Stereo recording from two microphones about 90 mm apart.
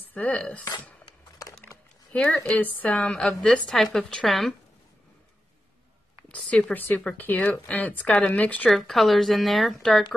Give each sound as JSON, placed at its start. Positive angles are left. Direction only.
{"t": 0.1, "sound": "speech", "side_deg": 15}
{"t": 2.1, "sound": "speech", "side_deg": 10}
{"t": 6.3, "sound": "speech", "side_deg": 15}
{"t": 8.6, "sound": "speech", "side_deg": 0}